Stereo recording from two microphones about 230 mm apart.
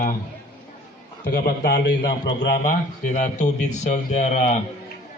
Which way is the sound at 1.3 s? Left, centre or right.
Left.